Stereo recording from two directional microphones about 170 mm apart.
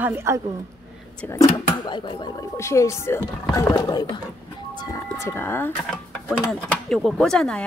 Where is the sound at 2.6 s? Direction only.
15° left (ahead or behind).